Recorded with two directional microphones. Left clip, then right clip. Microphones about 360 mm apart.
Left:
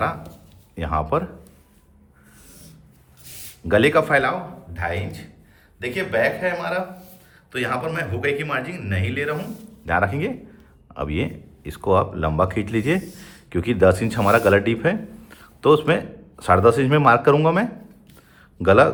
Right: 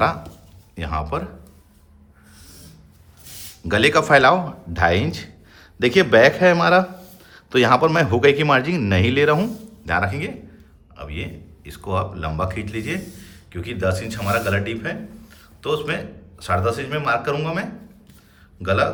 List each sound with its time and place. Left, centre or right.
0.8 s speech: centre
3.7 s speech: centre
9.8 s speech: centre